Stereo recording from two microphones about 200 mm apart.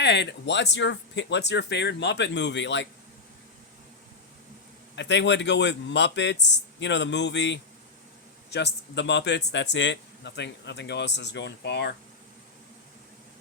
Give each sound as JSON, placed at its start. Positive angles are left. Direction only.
{"t": 0.0, "sound": "speech", "side_deg": 55}
{"t": 4.9, "sound": "speech", "side_deg": 60}